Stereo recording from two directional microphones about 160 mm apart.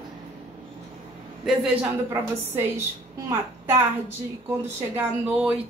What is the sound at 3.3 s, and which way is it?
Speech, 15° right (ahead or behind).